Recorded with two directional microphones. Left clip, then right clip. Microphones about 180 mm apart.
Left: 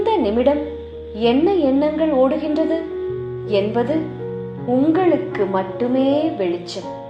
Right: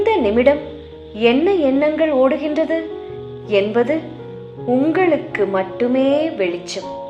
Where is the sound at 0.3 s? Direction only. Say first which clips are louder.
Right 3 dB; 30° right (ahead or behind).